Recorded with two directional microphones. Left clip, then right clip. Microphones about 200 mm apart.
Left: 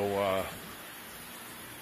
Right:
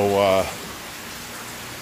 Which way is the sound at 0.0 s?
10° right (ahead or behind).